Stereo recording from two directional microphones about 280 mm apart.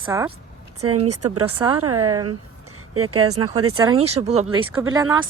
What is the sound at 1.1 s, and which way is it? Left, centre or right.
Speech, right.